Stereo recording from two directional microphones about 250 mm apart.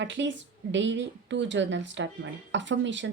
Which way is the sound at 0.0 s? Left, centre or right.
Right.